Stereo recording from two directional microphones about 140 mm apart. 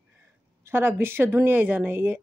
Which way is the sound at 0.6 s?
15° right (ahead or behind).